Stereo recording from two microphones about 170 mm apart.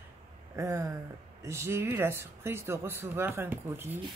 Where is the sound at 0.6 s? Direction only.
15° right (ahead or behind).